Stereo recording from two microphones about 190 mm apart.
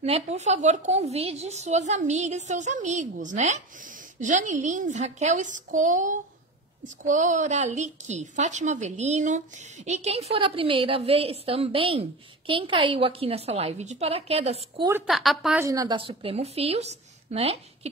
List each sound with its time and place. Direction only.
0.0 s a woman's voice: 35° right (ahead or behind)
15.0 s a woman's voice: centre (ahead or behind)
15.6 s a woman's voice: 20° right (ahead or behind)